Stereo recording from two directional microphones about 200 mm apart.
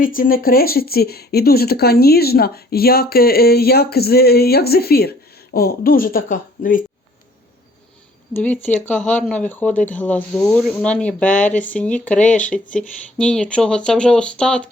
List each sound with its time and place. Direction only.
0.0 s speech: 45° left (ahead or behind)
8.3 s speech: 10° left (ahead or behind)